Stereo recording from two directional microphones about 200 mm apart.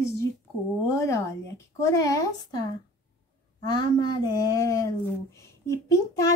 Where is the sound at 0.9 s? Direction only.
15° left (ahead or behind).